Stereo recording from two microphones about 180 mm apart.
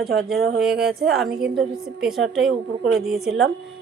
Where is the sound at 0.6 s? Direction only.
Centre (ahead or behind).